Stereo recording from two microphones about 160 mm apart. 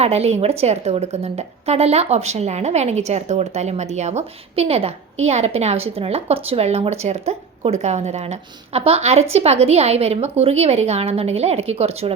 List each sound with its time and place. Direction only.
0.0 s a woman's voice: 40° right (ahead or behind)